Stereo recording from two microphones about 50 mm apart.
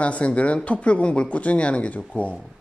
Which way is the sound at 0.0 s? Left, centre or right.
Left.